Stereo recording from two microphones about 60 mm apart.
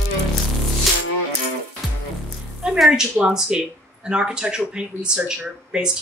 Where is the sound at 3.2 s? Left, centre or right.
Centre.